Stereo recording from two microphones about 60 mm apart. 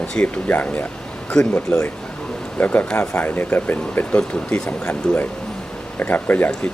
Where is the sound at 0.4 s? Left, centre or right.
Left.